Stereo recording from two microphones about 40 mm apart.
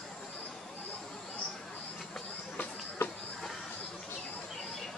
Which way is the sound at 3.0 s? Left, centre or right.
Left.